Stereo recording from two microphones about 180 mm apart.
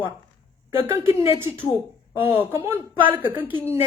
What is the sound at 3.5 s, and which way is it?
Speech, 25° left (ahead or behind).